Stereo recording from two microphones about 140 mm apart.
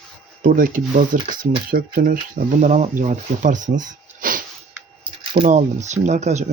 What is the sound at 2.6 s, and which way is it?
Speech, 60° right (ahead or behind).